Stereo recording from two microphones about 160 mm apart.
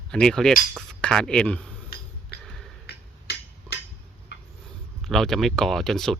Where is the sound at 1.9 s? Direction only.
70° left (ahead or behind).